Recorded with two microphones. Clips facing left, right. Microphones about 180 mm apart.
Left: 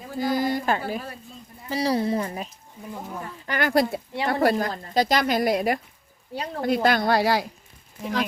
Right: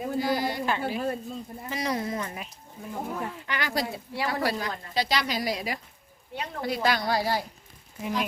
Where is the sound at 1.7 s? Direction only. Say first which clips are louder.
Left 7 dB; 30° left (ahead or behind).